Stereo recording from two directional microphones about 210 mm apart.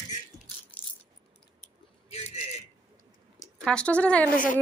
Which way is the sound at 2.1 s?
30° left (ahead or behind).